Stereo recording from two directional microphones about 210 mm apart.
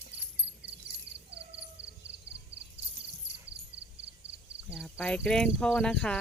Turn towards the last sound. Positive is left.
turn(degrees=5)  # may be behind; listen again after turning